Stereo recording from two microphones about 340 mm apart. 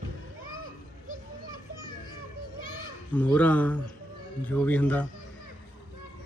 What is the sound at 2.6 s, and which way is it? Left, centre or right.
Children playing, right.